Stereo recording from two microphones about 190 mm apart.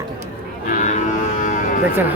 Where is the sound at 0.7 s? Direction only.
45° left (ahead or behind).